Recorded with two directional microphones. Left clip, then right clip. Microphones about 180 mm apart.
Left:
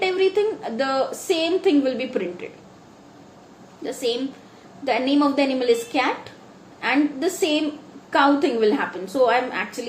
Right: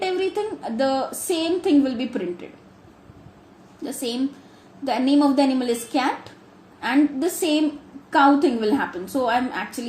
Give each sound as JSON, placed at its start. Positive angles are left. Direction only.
{"t": 0.0, "sound": "a woman's voice", "side_deg": -40}
{"t": 4.9, "sound": "a woman's voice", "side_deg": -40}